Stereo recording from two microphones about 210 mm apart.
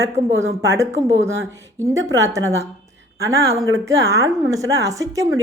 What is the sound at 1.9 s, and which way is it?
A woman's voice, 15° right (ahead or behind).